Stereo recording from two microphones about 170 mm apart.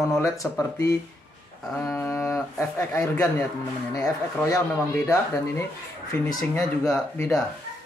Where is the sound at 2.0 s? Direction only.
15° left (ahead or behind).